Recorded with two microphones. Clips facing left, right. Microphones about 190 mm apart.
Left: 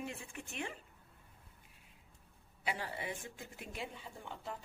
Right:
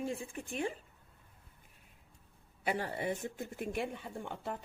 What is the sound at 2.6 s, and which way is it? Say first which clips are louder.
Speech: right 6 dB; 50° right (ahead or behind).